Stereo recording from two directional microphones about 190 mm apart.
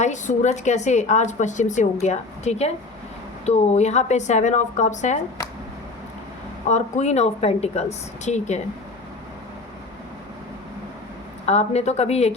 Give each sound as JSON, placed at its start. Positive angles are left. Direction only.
{"t": 0.0, "sound": "a woman's voice", "side_deg": 40}
{"t": 6.7, "sound": "a woman's voice", "side_deg": 40}
{"t": 11.4, "sound": "a woman's voice", "side_deg": 35}